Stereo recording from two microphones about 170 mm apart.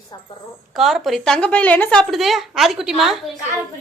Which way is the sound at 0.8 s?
Centre (ahead or behind).